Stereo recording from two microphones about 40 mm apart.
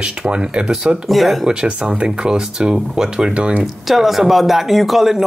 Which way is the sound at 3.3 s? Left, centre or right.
Right.